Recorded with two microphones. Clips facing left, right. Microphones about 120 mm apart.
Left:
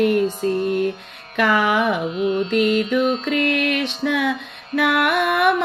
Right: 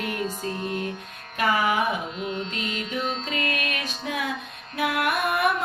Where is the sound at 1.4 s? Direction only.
70° left (ahead or behind).